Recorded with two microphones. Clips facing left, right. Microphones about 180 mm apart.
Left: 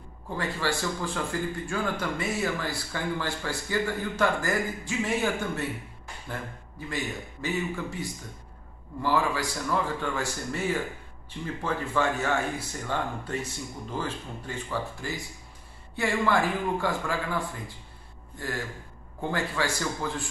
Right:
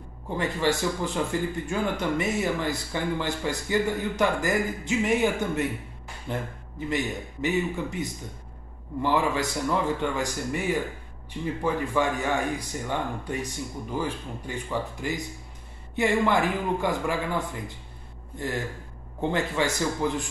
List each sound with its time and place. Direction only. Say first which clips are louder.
0.4 s speech: right 4 dB; 20° right (ahead or behind)
19.3 s speech: right 2 dB; 20° right (ahead or behind)